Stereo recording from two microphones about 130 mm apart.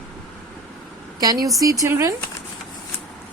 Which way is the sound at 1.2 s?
30° right (ahead or behind).